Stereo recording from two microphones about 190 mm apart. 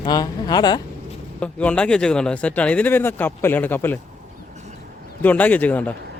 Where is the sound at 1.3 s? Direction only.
5° left (ahead or behind).